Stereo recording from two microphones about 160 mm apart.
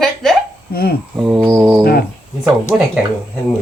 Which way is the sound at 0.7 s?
75° left (ahead or behind).